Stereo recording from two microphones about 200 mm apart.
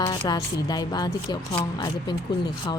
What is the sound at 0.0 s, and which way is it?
Speech, 20° left (ahead or behind).